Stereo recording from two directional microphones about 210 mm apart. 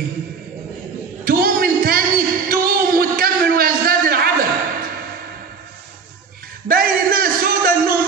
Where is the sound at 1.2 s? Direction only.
45° right (ahead or behind).